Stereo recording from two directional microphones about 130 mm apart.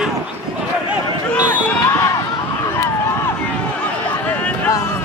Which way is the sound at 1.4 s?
15° left (ahead or behind).